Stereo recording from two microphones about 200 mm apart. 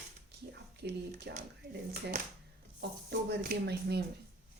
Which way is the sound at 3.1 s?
50° right (ahead or behind).